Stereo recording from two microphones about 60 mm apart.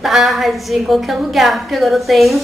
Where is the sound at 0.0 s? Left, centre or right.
Centre.